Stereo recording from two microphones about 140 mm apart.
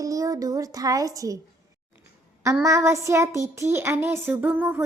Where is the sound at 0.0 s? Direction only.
25° right (ahead or behind).